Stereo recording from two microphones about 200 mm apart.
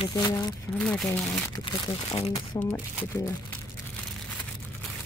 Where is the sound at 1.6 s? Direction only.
25° left (ahead or behind).